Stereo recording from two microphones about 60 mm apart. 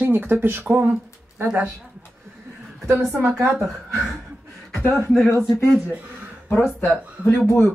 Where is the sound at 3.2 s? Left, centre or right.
Right.